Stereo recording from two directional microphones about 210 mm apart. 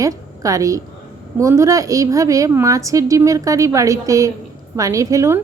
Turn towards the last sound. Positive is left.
turn(degrees=-15)  # may be behind; listen again after turning